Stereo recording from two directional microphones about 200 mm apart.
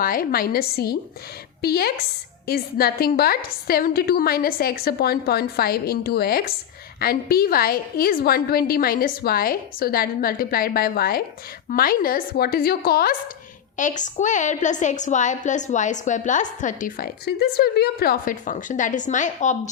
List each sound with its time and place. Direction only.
0.0 s a woman's voice: 45° left (ahead or behind)